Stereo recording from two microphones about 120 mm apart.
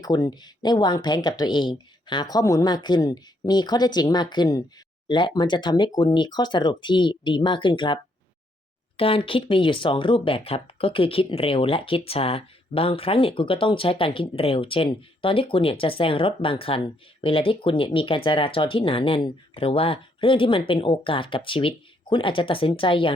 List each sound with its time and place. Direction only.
0.0 s speech: 35° left (ahead or behind)
9.0 s speech: 50° left (ahead or behind)